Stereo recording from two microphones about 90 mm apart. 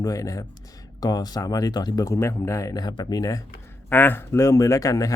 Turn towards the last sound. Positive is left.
turn(degrees=40)  # may be behind; listen again after turning